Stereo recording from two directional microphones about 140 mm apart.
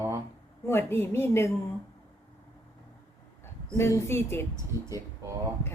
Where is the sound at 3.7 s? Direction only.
20° left (ahead or behind).